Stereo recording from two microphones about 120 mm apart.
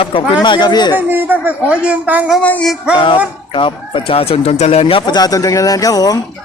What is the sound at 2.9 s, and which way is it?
Speech, 45° left (ahead or behind).